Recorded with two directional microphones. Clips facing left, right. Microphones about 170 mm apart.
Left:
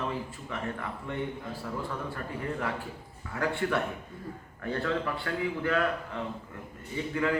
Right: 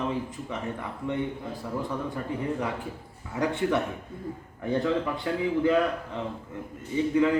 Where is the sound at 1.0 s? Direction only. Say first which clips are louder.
Right 7 dB; 15° right (ahead or behind).